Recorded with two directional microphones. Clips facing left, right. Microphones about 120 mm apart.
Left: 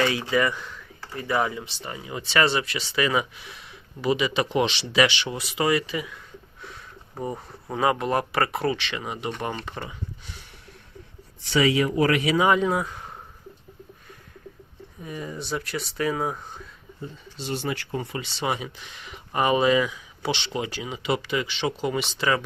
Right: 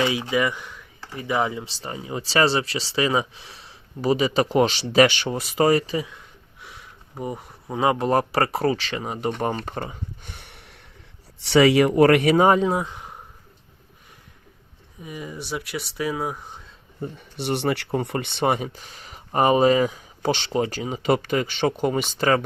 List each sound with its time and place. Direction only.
0.0 s speech: 15° right (ahead or behind)
1.6 s speech: 30° right (ahead or behind)
7.2 s speech: 15° right (ahead or behind)
7.9 s speech: 30° right (ahead or behind); by 10.5 s 55° right (ahead or behind)
11.3 s speech: 75° right (ahead or behind); by 12.5 s 55° right (ahead or behind)
12.5 s speech: 30° right (ahead or behind)
15.0 s speech: 10° right (ahead or behind)
17.0 s speech: 65° right (ahead or behind); by 22.4 s 45° right (ahead or behind)